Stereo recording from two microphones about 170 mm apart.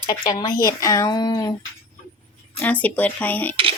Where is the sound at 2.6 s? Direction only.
10° left (ahead or behind).